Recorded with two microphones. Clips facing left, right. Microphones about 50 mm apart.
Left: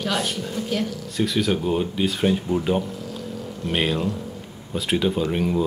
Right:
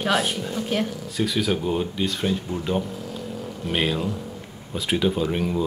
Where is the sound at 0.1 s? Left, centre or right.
Centre.